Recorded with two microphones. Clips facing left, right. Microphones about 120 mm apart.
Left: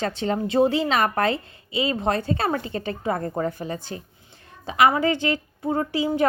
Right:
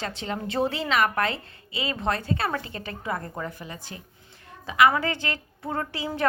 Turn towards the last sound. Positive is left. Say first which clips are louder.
# left 6 dB
turn(degrees=20)  # may be behind; listen again after turning